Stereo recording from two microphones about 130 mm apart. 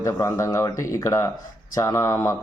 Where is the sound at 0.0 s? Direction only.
25° left (ahead or behind).